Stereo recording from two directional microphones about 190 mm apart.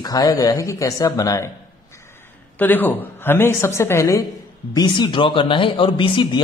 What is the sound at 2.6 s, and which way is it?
A woman's voice, 10° left (ahead or behind).